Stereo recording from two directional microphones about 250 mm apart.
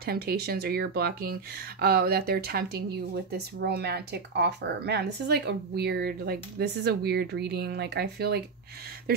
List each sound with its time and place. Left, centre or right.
0.0 s speech: right